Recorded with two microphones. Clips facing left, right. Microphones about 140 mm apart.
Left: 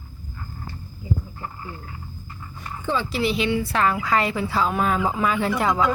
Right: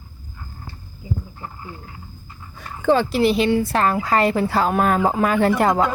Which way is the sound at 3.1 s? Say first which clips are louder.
Right 5 dB; 50° right (ahead or behind).